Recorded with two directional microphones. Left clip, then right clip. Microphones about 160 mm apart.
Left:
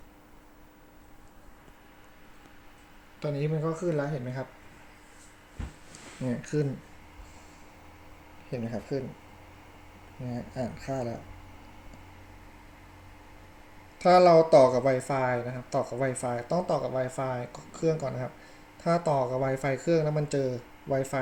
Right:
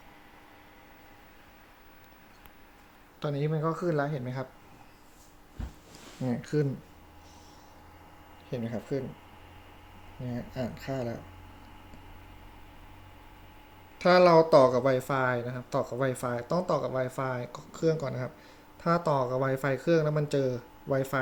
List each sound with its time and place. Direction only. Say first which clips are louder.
3.2 s speech: even; centre (ahead or behind)
3.6 s speech: right 2 dB; 15° right (ahead or behind)
3.9 s speech: right 1 dB; centre (ahead or behind)
6.2 s speech: even; 5° right (ahead or behind)
8.4 s speech: even; centre (ahead or behind)
10.2 s speech: left 1 dB; centre (ahead or behind)
14.0 s speech: left 1 dB; centre (ahead or behind)